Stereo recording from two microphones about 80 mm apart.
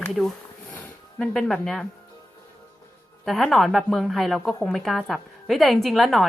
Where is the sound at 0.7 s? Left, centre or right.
Left.